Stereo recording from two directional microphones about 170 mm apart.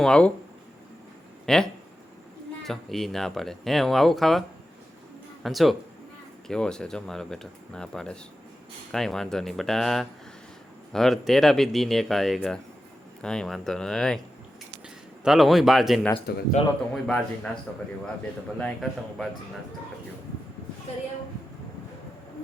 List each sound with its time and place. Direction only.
0.0 s speech: 5° left (ahead or behind)
1.5 s speech: 5° left (ahead or behind)
2.6 s speech: centre (ahead or behind)
15.2 s speech: centre (ahead or behind)
16.3 s speech: 70° left (ahead or behind)
16.9 s speech: 5° left (ahead or behind)
18.6 s speech: centre (ahead or behind)